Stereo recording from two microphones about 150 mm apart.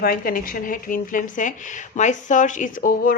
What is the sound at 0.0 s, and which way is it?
Speech, 70° left (ahead or behind).